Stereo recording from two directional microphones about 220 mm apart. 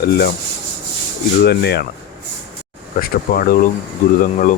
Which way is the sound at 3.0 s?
40° left (ahead or behind).